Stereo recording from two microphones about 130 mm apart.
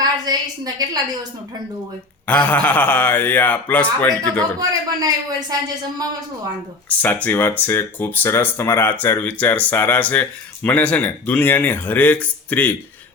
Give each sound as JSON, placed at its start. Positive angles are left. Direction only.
{"t": 0.0, "sound": "a sound", "side_deg": -30}
{"t": 2.2, "sound": "speech", "side_deg": 10}
{"t": 4.6, "sound": "a man's voice", "side_deg": -30}
{"t": 7.0, "sound": "speech", "side_deg": 15}